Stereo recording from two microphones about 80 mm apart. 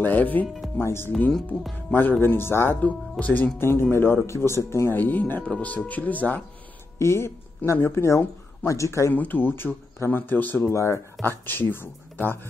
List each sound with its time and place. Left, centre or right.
0.0 s speech: left
1.3 s speech: centre
1.9 s speech: left
3.5 s speech: left
4.9 s speech: left
7.0 s speech: left
9.1 s speech: left
10.7 s speech: left
11.2 s speech: left